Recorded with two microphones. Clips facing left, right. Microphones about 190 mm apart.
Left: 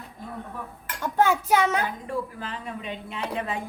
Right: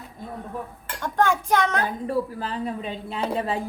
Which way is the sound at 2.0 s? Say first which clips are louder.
Right 5 dB; 35° right (ahead or behind).